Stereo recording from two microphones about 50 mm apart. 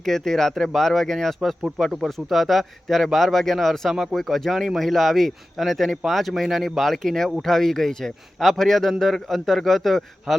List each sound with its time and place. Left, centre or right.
0.0 s speech: centre
1.8 s a man's voice: centre